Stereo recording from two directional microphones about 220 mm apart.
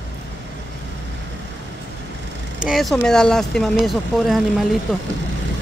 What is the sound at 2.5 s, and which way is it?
Speech, centre (ahead or behind).